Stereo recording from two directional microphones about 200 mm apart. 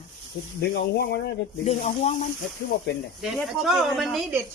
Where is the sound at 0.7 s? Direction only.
55° left (ahead or behind).